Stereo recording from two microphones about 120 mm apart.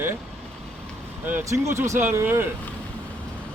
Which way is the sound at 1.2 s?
20° right (ahead or behind).